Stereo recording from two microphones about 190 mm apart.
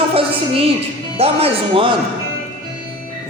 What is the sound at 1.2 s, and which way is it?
Speech, 30° right (ahead or behind).